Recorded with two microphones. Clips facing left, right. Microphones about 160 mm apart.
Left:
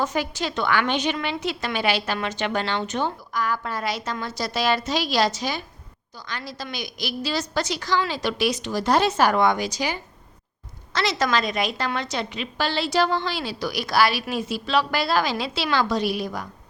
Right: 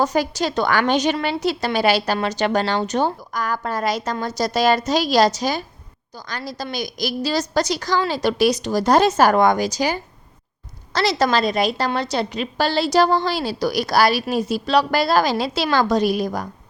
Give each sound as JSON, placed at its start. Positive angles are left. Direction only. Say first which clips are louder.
{"t": 0.0, "sound": "a woman's voice", "louder": "right 6 dB", "side_deg": -40}